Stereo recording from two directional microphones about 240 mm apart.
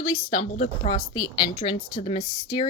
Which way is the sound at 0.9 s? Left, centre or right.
Centre.